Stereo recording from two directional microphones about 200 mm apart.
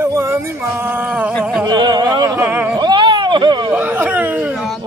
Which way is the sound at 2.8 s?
25° right (ahead or behind).